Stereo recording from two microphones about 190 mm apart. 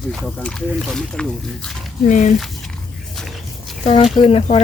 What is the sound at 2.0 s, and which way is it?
Speech, 40° left (ahead or behind).